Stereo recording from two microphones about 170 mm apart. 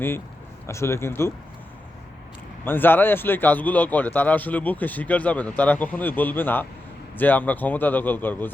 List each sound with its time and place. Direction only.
0.7 s a man's voice: 15° left (ahead or behind)
2.6 s a man's voice: 10° left (ahead or behind)